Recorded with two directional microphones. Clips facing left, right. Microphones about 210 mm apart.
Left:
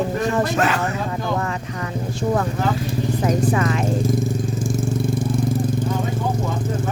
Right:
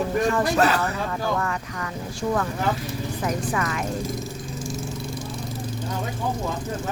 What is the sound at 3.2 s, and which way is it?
Speech, 25° left (ahead or behind).